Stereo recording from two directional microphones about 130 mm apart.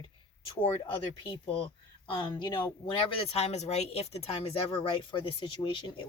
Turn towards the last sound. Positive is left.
turn(degrees=40)  # may be behind; listen again after turning